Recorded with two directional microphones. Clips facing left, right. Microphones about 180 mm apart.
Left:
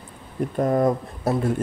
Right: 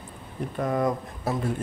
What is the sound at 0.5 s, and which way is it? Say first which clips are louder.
Speech: left 5 dB; 35° left (ahead or behind).